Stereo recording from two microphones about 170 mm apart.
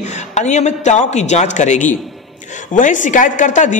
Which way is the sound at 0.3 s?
45° left (ahead or behind).